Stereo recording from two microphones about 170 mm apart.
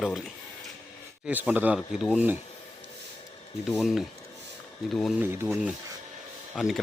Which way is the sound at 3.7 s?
Centre (ahead or behind).